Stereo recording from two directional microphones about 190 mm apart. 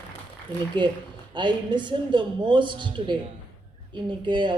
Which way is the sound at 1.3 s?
25° right (ahead or behind).